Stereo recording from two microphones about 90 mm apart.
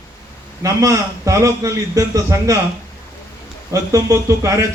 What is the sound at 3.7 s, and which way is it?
A man's voice, 35° right (ahead or behind).